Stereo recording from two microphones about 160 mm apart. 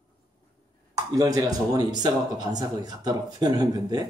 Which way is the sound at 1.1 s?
20° right (ahead or behind).